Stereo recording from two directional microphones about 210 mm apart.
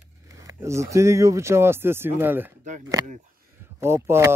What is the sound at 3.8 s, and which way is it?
Speech, 10° right (ahead or behind).